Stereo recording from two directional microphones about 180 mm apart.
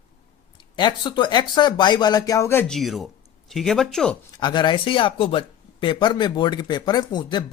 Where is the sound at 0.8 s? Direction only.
25° left (ahead or behind).